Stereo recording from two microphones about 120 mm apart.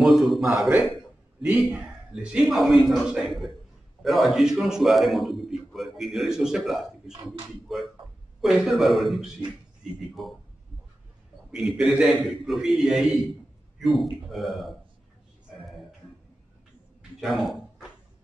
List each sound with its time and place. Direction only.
0.3 s a man's voice: centre (ahead or behind)
2.3 s a man's voice: centre (ahead or behind)
11.5 s a man's voice: 5° right (ahead or behind)
17.2 s a sound: centre (ahead or behind)